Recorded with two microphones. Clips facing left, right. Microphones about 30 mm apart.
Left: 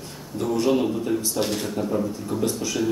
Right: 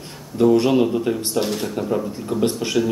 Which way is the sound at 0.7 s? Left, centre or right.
Right.